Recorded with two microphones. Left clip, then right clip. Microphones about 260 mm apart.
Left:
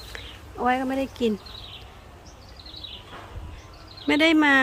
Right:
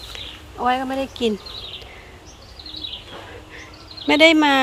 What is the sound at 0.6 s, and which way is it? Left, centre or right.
Speech, centre.